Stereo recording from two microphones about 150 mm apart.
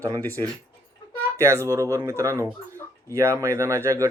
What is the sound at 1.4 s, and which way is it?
Speech, 20° right (ahead or behind).